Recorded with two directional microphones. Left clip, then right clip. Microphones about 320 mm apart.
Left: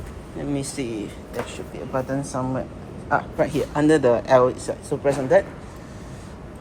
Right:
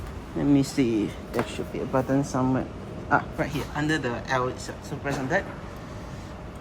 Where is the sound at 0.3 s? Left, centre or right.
Centre.